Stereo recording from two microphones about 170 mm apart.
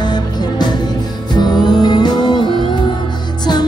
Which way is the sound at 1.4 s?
25° left (ahead or behind).